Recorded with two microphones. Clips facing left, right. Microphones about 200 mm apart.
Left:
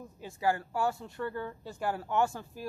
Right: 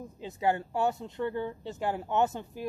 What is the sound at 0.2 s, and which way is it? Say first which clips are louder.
Speech: right 2 dB; 20° right (ahead or behind).